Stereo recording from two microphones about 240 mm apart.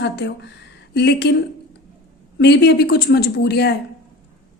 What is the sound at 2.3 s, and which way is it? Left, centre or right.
A woman's voice, left.